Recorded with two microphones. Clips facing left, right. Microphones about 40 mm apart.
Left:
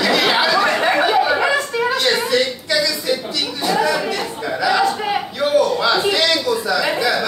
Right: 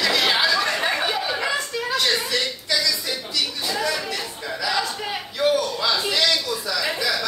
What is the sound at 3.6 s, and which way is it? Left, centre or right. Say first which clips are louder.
Chatter: left 11 dB; left.